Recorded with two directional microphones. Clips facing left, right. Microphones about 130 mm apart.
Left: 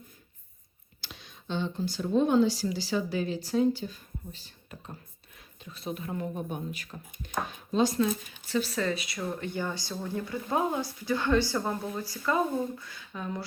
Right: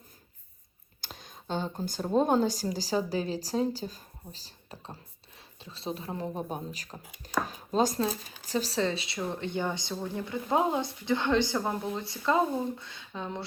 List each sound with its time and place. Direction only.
1.0 s speech: 45° right (ahead or behind); by 13.4 s 25° right (ahead or behind)